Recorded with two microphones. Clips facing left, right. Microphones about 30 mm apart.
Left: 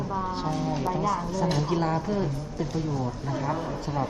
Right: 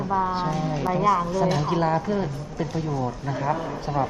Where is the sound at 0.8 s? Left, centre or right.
Right.